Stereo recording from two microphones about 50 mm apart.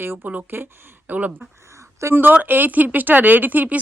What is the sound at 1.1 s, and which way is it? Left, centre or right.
Speech, right.